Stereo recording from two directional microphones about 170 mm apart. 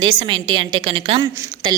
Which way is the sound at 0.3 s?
25° right (ahead or behind).